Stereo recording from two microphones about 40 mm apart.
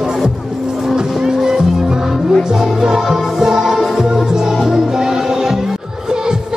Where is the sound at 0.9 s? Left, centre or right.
Centre.